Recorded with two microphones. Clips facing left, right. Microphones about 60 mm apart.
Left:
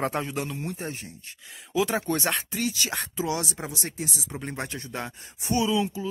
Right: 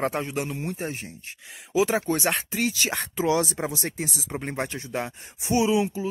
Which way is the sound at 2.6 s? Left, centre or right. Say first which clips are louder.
Right 3 dB; right.